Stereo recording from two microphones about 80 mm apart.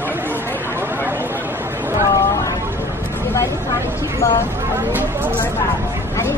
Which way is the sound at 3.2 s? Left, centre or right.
Left.